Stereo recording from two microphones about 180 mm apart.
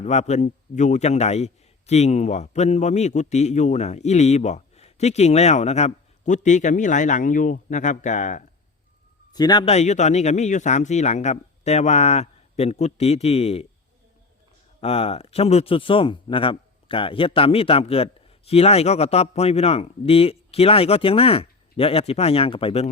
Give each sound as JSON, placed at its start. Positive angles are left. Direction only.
{"t": 0.0, "sound": "a man's voice", "side_deg": 40}
{"t": 9.3, "sound": "a man's voice", "side_deg": 20}
{"t": 9.6, "sound": "a man's voice", "side_deg": 40}
{"t": 14.8, "sound": "a man's voice", "side_deg": 35}